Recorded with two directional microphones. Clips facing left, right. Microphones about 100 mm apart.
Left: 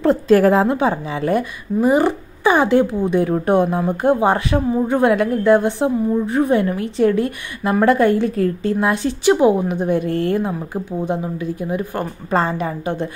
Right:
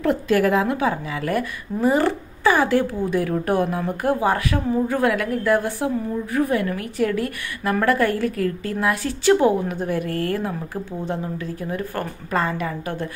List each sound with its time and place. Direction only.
0.0 s a woman's voice: 35° left (ahead or behind)